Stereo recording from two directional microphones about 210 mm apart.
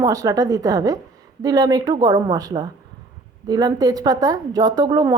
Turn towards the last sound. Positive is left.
turn(degrees=-20)  # may be behind; listen again after turning